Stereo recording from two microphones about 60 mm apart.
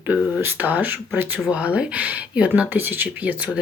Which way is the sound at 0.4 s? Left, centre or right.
Right.